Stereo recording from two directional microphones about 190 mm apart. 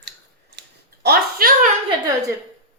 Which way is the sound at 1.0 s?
55° right (ahead or behind).